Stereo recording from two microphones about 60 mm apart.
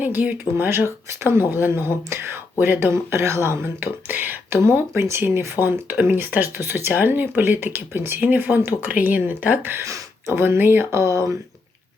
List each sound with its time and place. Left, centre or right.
0.0 s speech: right
2.9 s speech: right
4.5 s speech: right
9.8 s a sound: right
10.3 s speech: right
11.0 s speech: right